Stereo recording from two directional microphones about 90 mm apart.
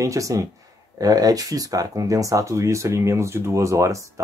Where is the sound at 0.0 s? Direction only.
40° right (ahead or behind).